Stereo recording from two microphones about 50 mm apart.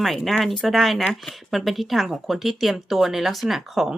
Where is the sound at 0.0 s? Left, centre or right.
Centre.